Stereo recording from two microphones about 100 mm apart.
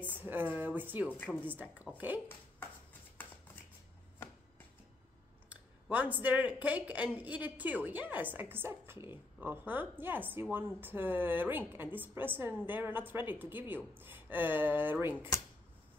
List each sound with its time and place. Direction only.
0.0 s a woman's voice: 20° right (ahead or behind)
1.1 s a woman's voice: 15° left (ahead or behind)
1.4 s speech: 20° right (ahead or behind)
5.5 s a woman's voice: 15° right (ahead or behind)